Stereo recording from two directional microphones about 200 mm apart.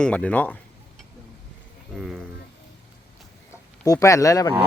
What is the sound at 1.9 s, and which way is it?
Speech, centre (ahead or behind).